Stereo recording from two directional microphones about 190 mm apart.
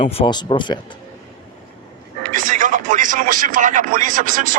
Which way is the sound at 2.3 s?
45° right (ahead or behind).